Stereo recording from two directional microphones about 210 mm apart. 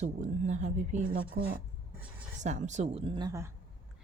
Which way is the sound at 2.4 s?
35° right (ahead or behind).